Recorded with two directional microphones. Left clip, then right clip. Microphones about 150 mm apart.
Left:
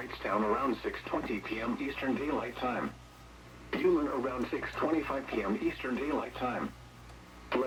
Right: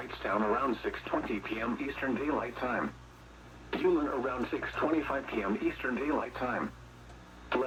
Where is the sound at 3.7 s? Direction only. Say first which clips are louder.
Even; centre (ahead or behind); by 5.5 s 20° left (ahead or behind).